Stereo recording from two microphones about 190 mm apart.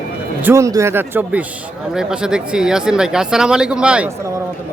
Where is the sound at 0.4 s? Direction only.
15° right (ahead or behind).